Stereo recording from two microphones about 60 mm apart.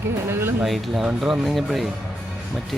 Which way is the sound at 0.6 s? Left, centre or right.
Centre.